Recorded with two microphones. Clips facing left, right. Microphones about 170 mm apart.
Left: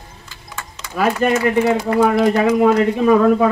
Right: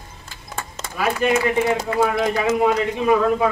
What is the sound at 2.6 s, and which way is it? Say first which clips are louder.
Speech: left 5 dB; 45° left (ahead or behind).